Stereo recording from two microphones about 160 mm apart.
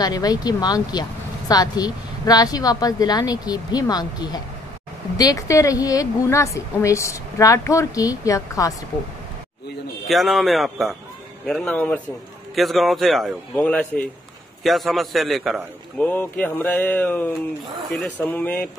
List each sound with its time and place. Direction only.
0.0 s a woman's voice: 25° left (ahead or behind)
10.0 s a man's voice: centre (ahead or behind)
11.4 s mantra: 5° left (ahead or behind)
12.5 s a man's voice: centre (ahead or behind)
16.1 s mantra: 10° left (ahead or behind)